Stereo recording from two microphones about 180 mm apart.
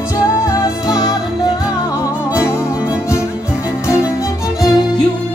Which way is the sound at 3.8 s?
15° left (ahead or behind).